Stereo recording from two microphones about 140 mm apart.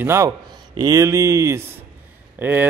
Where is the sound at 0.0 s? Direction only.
20° right (ahead or behind).